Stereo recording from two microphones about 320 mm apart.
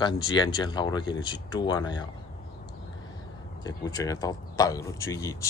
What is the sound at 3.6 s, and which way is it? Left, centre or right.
Speech, centre.